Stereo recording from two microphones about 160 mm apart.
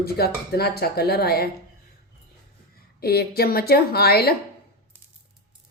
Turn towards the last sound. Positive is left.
turn(degrees=75)  # may be behind; listen again after turning